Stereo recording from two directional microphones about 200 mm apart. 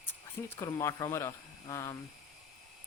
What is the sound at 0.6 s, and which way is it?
Speech, 15° left (ahead or behind).